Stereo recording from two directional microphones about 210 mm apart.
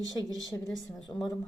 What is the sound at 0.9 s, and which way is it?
Speech, centre (ahead or behind).